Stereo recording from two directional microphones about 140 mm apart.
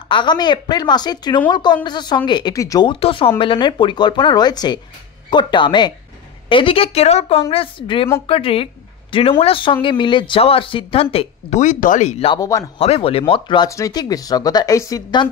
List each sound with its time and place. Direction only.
0.1 s speech: 35° left (ahead or behind)
2.9 s speech: 40° left (ahead or behind)
11.6 s speech: 65° left (ahead or behind); by 12.4 s 50° left (ahead or behind)
12.4 s speech: 25° left (ahead or behind)
12.7 s speech: 45° left (ahead or behind)
13.7 s speech: 25° left (ahead or behind)